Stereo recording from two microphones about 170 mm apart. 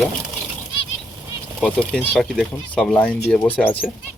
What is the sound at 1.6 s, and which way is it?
Speech, 5° left (ahead or behind).